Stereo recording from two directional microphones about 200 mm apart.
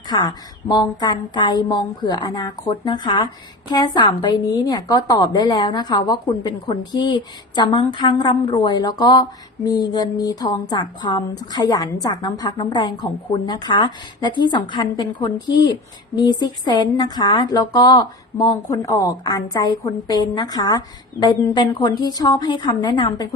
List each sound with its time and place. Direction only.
0.1 s a woman's voice: 20° left (ahead or behind)